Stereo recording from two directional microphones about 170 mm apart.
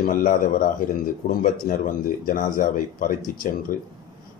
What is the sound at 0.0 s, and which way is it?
Speech, 55° left (ahead or behind).